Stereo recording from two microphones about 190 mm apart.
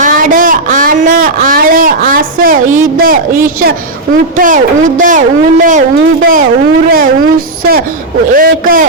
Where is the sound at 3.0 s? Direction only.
45° right (ahead or behind).